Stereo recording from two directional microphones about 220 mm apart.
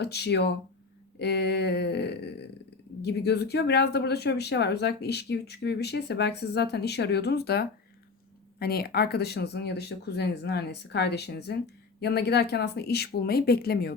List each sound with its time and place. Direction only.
0.0 s speech: 50° left (ahead or behind)